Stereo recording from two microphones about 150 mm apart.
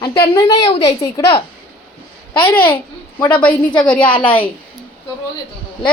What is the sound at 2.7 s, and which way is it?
Babbling, 15° left (ahead or behind).